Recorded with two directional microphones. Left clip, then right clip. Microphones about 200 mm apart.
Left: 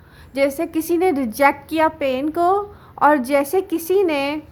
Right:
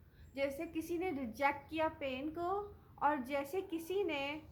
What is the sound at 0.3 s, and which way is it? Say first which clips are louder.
A woman's voice: left 19 dB; 45° left (ahead or behind).